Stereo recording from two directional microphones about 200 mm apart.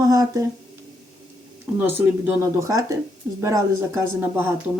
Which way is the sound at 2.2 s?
15° right (ahead or behind).